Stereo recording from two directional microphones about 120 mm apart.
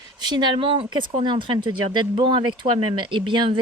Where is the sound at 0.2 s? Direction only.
40° right (ahead or behind).